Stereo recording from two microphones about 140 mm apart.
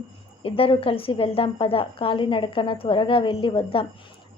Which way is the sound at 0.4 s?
40° left (ahead or behind).